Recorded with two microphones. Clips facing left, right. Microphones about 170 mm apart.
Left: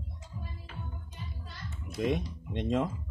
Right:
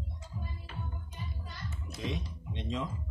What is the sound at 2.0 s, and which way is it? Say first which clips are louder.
Speech: left 8 dB; 50° left (ahead or behind).